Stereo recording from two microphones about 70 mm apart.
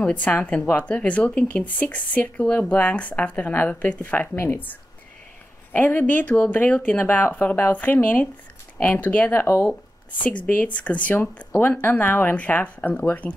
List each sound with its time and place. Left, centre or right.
0.0 s speech: left
10.1 s speech: centre